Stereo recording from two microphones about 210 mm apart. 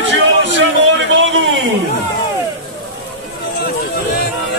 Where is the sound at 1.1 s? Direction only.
65° right (ahead or behind).